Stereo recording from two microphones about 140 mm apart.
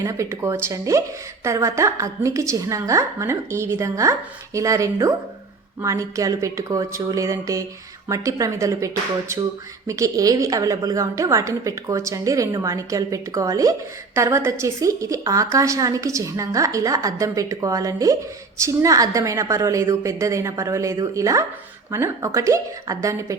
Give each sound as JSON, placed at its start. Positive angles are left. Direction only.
{"t": 0.0, "sound": "a woman's voice", "side_deg": -20}